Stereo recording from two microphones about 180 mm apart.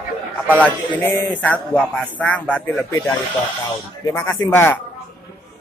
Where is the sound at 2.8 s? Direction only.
10° left (ahead or behind).